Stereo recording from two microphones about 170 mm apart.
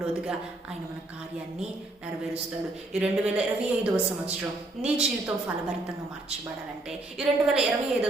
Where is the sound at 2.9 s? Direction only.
5° right (ahead or behind).